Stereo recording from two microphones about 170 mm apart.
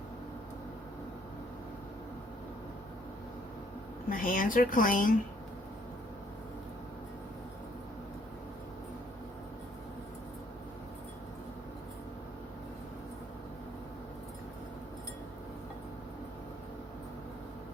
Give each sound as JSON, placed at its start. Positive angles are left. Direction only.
{"t": 4.1, "sound": "speech", "side_deg": 55}